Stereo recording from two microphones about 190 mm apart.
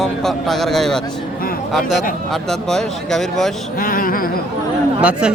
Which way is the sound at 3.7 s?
45° left (ahead or behind).